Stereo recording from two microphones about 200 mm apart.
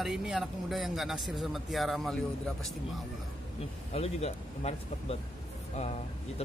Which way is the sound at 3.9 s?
30° left (ahead or behind).